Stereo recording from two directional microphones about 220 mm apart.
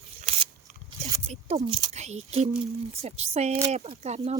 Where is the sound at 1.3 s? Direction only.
30° right (ahead or behind).